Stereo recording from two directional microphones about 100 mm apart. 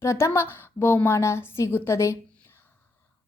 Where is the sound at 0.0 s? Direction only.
30° left (ahead or behind).